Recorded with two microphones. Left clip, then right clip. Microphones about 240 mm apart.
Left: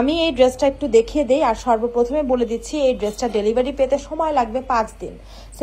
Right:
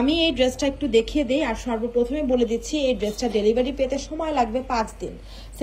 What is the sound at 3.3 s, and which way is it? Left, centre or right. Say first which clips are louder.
Speech: even; left.